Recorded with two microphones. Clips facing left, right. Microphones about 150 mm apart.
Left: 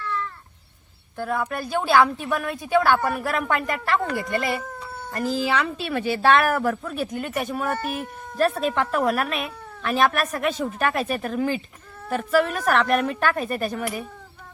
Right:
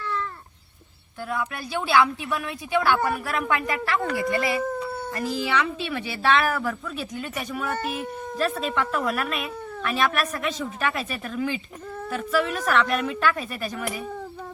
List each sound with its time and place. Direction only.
1.2 s a woman's voice: 45° left (ahead or behind)